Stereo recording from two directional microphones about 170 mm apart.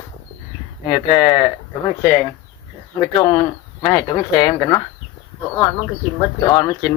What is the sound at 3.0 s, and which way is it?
Speech, 25° left (ahead or behind).